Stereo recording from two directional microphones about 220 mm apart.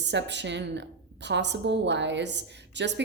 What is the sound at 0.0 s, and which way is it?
A woman's voice, 50° right (ahead or behind).